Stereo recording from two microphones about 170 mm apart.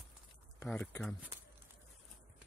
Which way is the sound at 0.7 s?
10° left (ahead or behind).